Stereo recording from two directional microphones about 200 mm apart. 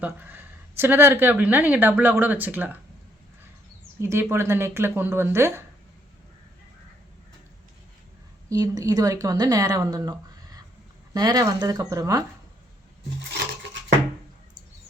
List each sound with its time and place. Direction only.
0.0 s speech: 10° right (ahead or behind)
4.0 s speech: 15° right (ahead or behind)
8.4 s speech: 15° right (ahead or behind)